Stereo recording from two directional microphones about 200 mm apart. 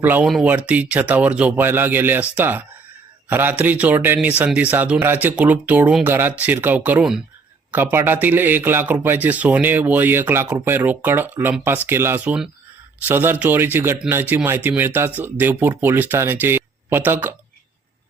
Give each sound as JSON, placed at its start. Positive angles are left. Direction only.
{"t": 0.0, "sound": "a man's voice", "side_deg": -10}